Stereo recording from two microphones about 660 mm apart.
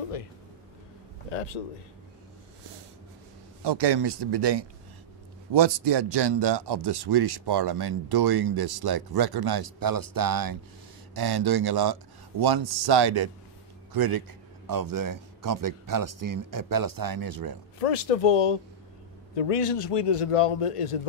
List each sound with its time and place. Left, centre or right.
1.3 s a man's voice: left
3.6 s speech: right
17.7 s a man's voice: left